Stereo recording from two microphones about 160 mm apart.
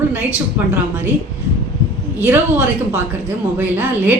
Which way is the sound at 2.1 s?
15° right (ahead or behind).